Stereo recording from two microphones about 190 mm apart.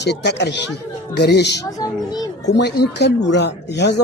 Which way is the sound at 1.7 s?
20° left (ahead or behind).